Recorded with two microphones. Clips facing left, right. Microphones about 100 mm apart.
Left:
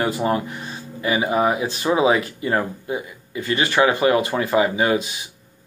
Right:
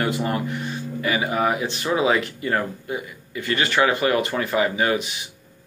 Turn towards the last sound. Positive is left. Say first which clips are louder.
# left 3 dB
turn(degrees=20)  # may be behind; listen again after turning